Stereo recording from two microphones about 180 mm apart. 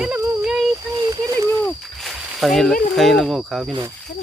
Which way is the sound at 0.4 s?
Centre (ahead or behind).